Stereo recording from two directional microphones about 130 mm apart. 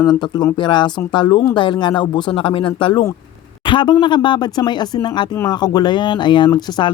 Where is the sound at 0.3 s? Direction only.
35° left (ahead or behind).